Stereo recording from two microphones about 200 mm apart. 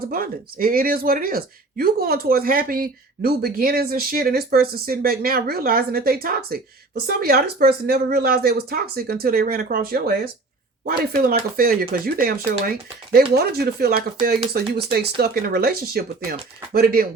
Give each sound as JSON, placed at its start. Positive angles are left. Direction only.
{"t": 0.0, "sound": "speech", "side_deg": -45}
{"t": 13.3, "sound": "speech", "side_deg": -50}